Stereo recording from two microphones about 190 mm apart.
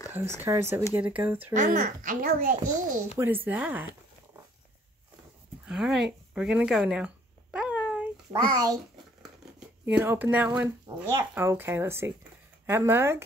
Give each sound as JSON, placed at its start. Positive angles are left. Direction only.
{"t": 0.1, "sound": "speech", "side_deg": -10}
{"t": 1.5, "sound": "a child's voice", "side_deg": -45}
{"t": 3.2, "sound": "speech", "side_deg": -10}
{"t": 5.7, "sound": "speech", "side_deg": 0}
{"t": 7.5, "sound": "a sound", "side_deg": -5}
{"t": 8.3, "sound": "a child's voice", "side_deg": -20}
{"t": 9.8, "sound": "speech", "side_deg": -10}